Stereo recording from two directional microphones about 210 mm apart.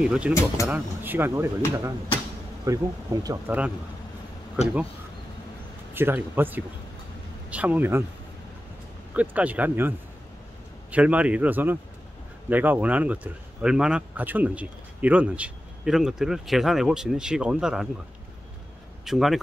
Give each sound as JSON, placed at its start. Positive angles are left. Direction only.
{"t": 0.0, "sound": "speech", "side_deg": -5}
{"t": 0.3, "sound": "speech", "side_deg": 15}
{"t": 0.7, "sound": "speech", "side_deg": -5}
{"t": 2.6, "sound": "speech", "side_deg": -15}
{"t": 5.9, "sound": "speech", "side_deg": -10}
{"t": 9.1, "sound": "speech", "side_deg": -5}
{"t": 19.0, "sound": "speech", "side_deg": 0}